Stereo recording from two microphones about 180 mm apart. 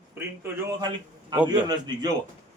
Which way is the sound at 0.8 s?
25° right (ahead or behind).